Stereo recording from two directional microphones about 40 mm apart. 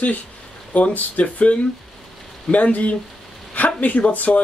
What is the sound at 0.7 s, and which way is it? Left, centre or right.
Speech, left.